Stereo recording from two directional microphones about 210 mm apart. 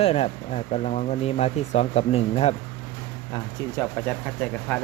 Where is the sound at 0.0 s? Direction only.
30° left (ahead or behind).